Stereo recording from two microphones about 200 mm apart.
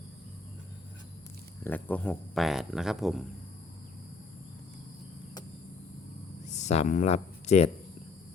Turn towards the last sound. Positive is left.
turn(degrees=35)  # may be behind; listen again after turning